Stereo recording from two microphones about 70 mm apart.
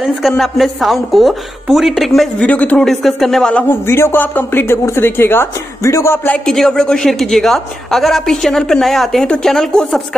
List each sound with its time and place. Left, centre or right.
0.4 s a woman's voice: centre
2.3 s speech: centre
2.8 s a woman's voice: centre
3.6 s a man's voice: left
6.4 s a woman's voice: centre